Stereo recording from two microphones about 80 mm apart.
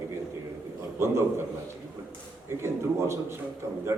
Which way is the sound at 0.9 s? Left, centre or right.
Right.